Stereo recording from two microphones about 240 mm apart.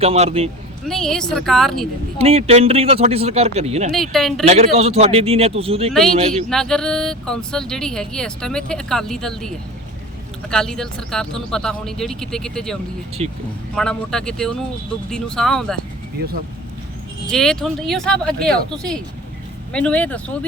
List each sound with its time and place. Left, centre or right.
0.0 s speech: right
0.9 s speech: centre
2.1 s speech: right
3.9 s speech: centre
4.4 s speech: right
6.5 s speech: centre
13.2 s speech: right
13.7 s speech: centre
17.2 s speech: centre